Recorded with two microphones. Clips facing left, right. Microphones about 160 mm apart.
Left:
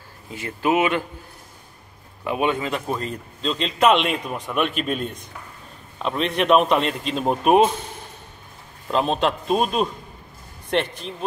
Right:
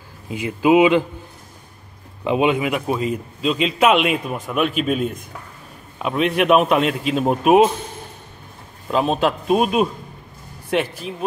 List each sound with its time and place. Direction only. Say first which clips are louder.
0.3 s speech: right 6 dB; 15° right (ahead or behind)
2.2 s a man's voice: right 5 dB; 20° right (ahead or behind); by 7.7 s 5° right (ahead or behind)
8.8 s a man's voice: right 2 dB; 5° right (ahead or behind)